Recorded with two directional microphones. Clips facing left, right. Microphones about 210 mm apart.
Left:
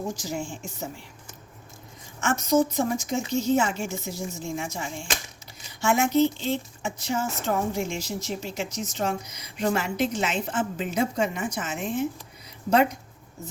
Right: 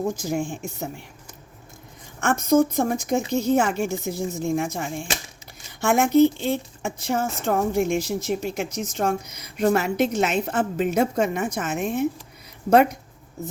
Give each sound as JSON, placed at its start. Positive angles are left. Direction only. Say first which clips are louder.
{"t": 0.2, "sound": "speech", "louder": "right 6 dB", "side_deg": -55}
{"t": 2.2, "sound": "speech", "louder": "right 4 dB", "side_deg": -55}